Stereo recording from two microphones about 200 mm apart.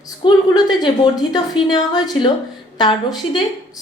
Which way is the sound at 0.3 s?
20° left (ahead or behind).